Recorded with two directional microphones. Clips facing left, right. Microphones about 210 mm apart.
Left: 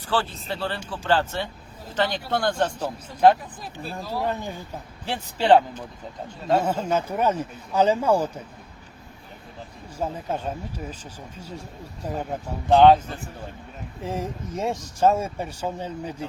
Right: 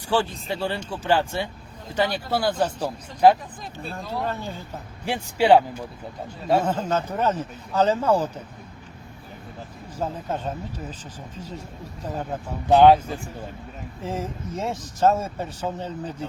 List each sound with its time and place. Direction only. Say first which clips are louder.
0.1 s speech: right 3 dB; 15° right (ahead or behind)
4.2 s speech: left 2 dB; 15° left (ahead or behind)
5.0 s speech: right 1 dB; 10° right (ahead or behind)
6.6 s speech: even; 10° left (ahead or behind)
10.0 s speech: even; 10° left (ahead or behind)
12.6 s speech: even; 10° right (ahead or behind)
14.0 s speech: even; 15° left (ahead or behind)